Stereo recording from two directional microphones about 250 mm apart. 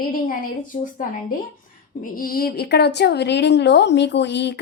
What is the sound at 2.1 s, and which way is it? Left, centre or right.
A woman's voice, left.